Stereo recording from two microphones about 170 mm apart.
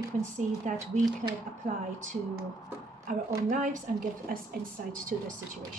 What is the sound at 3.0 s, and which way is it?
A woman's voice, 50° right (ahead or behind).